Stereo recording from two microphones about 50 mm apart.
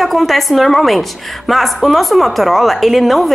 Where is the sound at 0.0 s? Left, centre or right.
Centre.